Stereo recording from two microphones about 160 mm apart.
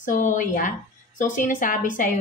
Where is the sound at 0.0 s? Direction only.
50° left (ahead or behind).